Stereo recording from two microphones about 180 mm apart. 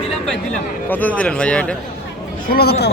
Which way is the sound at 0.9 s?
10° left (ahead or behind).